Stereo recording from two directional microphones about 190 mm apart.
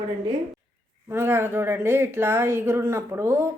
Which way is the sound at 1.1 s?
10° right (ahead or behind).